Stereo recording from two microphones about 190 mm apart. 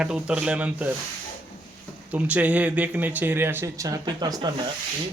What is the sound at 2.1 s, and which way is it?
Speech, 5° right (ahead or behind).